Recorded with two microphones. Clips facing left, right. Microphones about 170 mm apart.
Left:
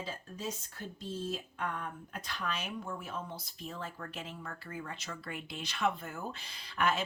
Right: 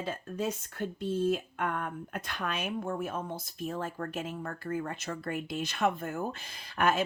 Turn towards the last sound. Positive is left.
turn(degrees=-50)  # may be behind; listen again after turning